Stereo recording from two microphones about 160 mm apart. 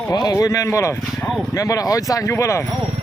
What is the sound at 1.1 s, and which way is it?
Speech, centre (ahead or behind).